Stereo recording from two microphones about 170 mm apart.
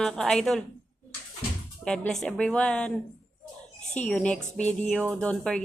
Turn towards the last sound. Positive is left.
turn(degrees=5)  # may be behind; listen again after turning